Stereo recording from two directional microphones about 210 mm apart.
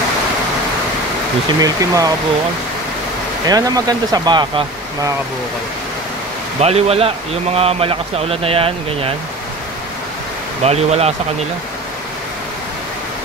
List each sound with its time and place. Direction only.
1.6 s speech: 15° right (ahead or behind)
3.4 s a man's voice: 15° right (ahead or behind)
6.6 s a man's voice: 30° right (ahead or behind)
10.6 s speech: 30° right (ahead or behind)